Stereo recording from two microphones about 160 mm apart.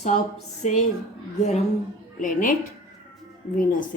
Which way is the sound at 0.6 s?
45° left (ahead or behind).